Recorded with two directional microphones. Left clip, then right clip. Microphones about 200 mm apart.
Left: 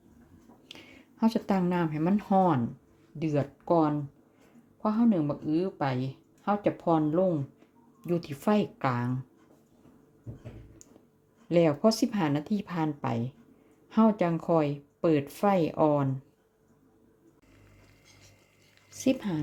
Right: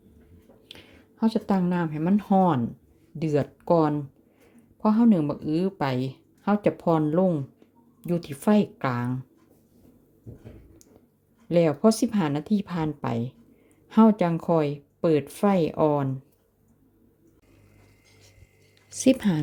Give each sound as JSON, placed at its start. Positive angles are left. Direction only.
{"t": 0.7, "sound": "speech", "side_deg": 0}
{"t": 11.4, "sound": "speech", "side_deg": -15}
{"t": 18.9, "sound": "speech", "side_deg": -25}